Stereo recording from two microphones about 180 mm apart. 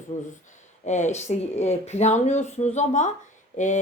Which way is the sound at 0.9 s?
40° left (ahead or behind).